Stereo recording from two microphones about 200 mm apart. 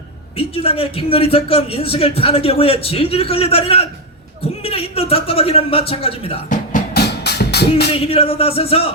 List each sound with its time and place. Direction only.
0.3 s a man's voice: 25° left (ahead or behind)
6.5 s music: 45° left (ahead or behind)
7.9 s a man's voice: 30° left (ahead or behind)